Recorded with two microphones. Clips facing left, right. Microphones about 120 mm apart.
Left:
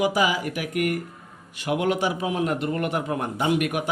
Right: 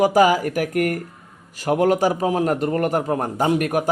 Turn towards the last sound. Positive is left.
turn(degrees=-40)  # may be behind; listen again after turning